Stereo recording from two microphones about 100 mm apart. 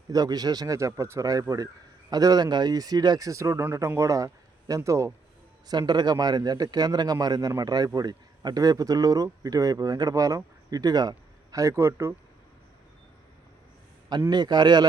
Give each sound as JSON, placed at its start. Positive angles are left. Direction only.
{"t": 0.1, "sound": "speech", "side_deg": -40}
{"t": 5.6, "sound": "a man's voice", "side_deg": -45}
{"t": 14.3, "sound": "a man's voice", "side_deg": -45}